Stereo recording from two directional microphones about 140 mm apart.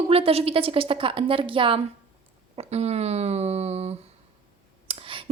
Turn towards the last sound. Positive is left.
turn(degrees=-40)  # may be behind; listen again after turning